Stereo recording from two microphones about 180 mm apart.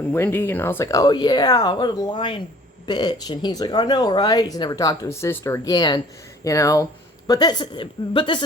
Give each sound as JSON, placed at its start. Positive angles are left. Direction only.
{"t": 0.1, "sound": "speech", "side_deg": 10}